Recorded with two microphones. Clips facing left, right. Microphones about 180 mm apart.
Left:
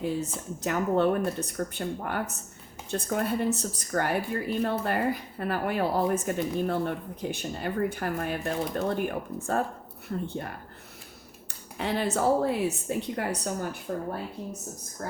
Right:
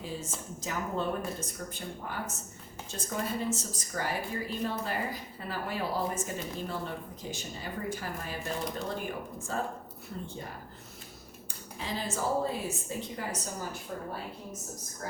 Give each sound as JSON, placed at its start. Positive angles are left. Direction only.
{"t": 0.6, "sound": "a woman's voice", "side_deg": 65}
{"t": 11.8, "sound": "a woman's voice", "side_deg": 65}
{"t": 13.9, "sound": "speech", "side_deg": 50}